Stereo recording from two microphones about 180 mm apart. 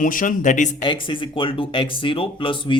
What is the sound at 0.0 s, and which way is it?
Speech, 45° left (ahead or behind).